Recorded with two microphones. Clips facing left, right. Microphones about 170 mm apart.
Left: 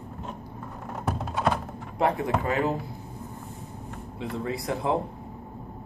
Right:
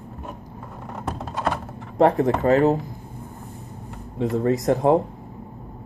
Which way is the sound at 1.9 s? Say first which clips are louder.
Right 7 dB; 45° right (ahead or behind).